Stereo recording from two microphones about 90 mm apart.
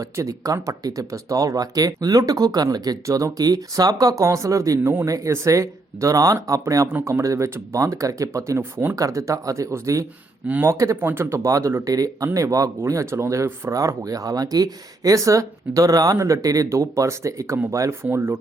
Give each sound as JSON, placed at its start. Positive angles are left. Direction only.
{"t": 0.0, "sound": "speech", "side_deg": -40}
{"t": 9.0, "sound": "speech", "side_deg": -35}